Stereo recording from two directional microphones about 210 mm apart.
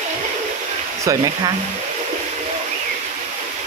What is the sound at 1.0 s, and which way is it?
Speech, 20° right (ahead or behind).